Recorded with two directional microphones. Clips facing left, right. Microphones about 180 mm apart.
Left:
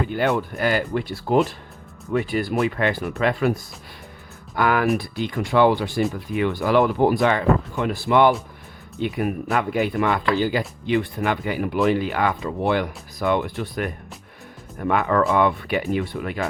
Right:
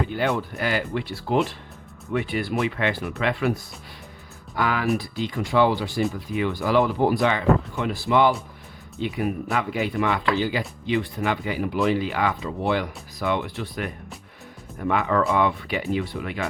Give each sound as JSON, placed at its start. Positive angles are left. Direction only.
{"t": 0.1, "sound": "speech", "side_deg": 50}
{"t": 4.5, "sound": "speech", "side_deg": 55}
{"t": 14.8, "sound": "speech", "side_deg": 50}